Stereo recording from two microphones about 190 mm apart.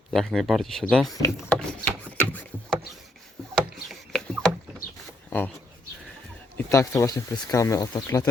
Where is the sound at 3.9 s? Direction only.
Centre (ahead or behind).